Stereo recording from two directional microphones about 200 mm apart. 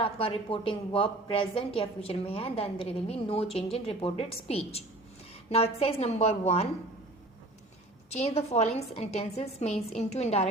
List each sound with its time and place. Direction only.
0.0 s a woman's voice: 25° left (ahead or behind)
8.1 s a woman's voice: 30° left (ahead or behind)